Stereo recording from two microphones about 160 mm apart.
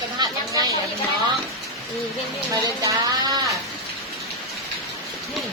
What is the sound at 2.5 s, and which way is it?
Speech, 20° right (ahead or behind).